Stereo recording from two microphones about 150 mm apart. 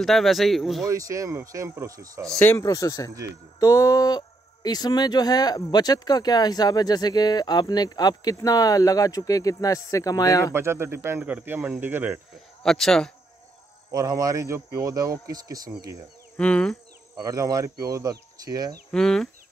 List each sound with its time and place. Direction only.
0.0 s speech: centre (ahead or behind)
0.8 s speech: 20° right (ahead or behind)
2.2 s speech: 5° left (ahead or behind)
2.5 s speech: 25° left (ahead or behind)
10.5 s speech: 15° right (ahead or behind)
12.6 s speech: 5° left (ahead or behind)
13.9 s speech: 25° right (ahead or behind)
16.3 s insect: 10° left (ahead or behind)
17.2 s speech: 25° right (ahead or behind)
18.9 s speech: 5° left (ahead or behind)